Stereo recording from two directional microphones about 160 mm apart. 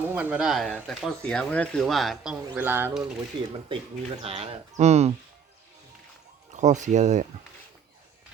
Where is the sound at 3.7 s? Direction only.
35° right (ahead or behind).